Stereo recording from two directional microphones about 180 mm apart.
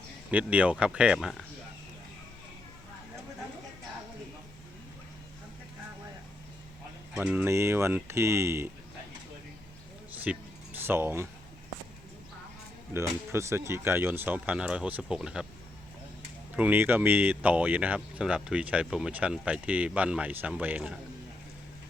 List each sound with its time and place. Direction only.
0.3 s speech: 10° right (ahead or behind)
7.2 s speech: 10° right (ahead or behind)
10.2 s a sound: 10° right (ahead or behind)
12.9 s speech: 15° right (ahead or behind)
16.6 s speech: 10° right (ahead or behind)